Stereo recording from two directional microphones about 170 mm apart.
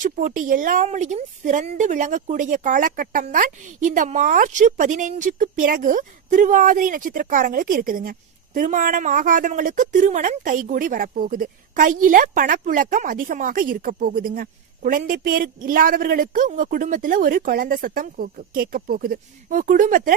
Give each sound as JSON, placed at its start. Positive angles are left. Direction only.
{"t": 0.0, "sound": "speech", "side_deg": -50}